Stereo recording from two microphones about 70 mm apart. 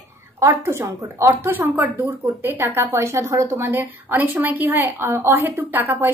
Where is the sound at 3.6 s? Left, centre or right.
Right.